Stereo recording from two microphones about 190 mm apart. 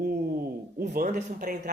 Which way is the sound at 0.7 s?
50° right (ahead or behind).